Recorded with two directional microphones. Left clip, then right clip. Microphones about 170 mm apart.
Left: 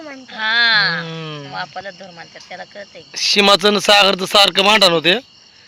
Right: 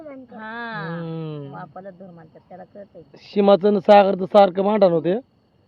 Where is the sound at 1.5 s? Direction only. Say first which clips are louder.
Left 10 dB; 5° right (ahead or behind).